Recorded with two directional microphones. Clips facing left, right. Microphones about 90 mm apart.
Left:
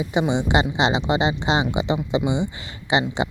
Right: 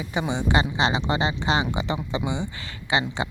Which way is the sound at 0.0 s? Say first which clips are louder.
Left 5 dB; 20° left (ahead or behind).